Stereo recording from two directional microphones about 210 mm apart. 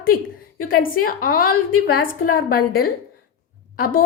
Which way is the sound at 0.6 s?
45° left (ahead or behind).